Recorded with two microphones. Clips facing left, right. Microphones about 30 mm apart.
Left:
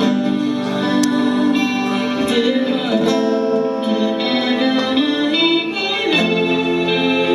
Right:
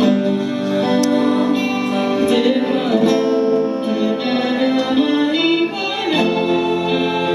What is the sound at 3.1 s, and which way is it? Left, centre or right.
Music, centre.